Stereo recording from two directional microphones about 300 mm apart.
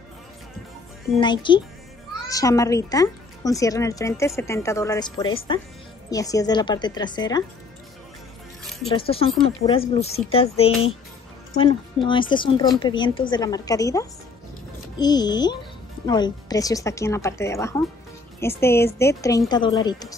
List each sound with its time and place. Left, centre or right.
1.2 s a woman's voice: centre
8.8 s a woman's voice: centre